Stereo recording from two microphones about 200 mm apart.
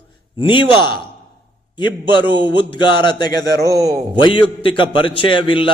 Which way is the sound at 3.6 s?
15° right (ahead or behind).